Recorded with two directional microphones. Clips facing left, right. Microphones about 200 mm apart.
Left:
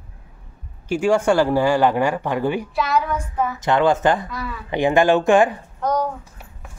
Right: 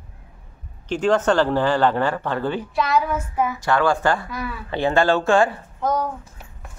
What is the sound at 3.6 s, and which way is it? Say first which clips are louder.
A man's voice: left 4 dB; 20° left (ahead or behind).